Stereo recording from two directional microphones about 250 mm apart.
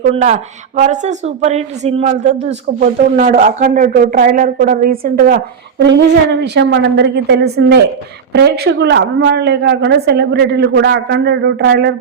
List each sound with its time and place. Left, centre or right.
0.1 s a woman's voice: right